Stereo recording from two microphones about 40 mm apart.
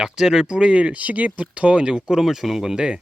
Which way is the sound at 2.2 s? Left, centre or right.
Centre.